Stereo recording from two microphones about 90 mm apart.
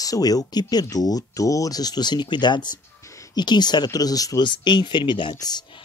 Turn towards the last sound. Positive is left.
turn(degrees=50)  # may be behind; listen again after turning